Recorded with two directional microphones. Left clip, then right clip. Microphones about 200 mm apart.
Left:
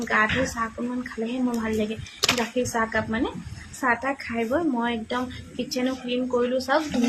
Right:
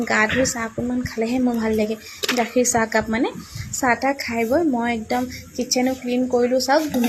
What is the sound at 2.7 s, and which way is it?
A woman's voice, 25° right (ahead or behind).